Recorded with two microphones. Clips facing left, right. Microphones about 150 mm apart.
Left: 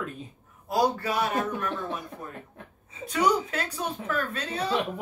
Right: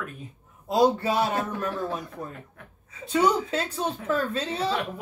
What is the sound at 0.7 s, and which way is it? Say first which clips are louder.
Speech: right 4 dB; 25° right (ahead or behind).